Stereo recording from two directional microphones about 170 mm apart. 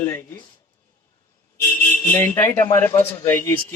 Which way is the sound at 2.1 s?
15° left (ahead or behind).